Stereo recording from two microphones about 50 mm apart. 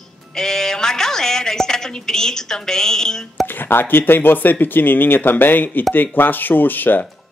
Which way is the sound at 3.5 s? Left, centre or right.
Left.